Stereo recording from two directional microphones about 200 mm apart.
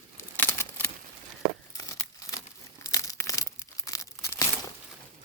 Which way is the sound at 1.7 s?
15° left (ahead or behind).